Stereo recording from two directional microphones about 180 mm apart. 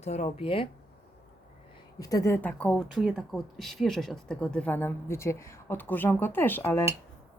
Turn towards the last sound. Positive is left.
turn(degrees=10)  # may be behind; listen again after turning